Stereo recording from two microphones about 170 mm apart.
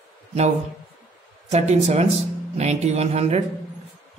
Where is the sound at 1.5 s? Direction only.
40° right (ahead or behind).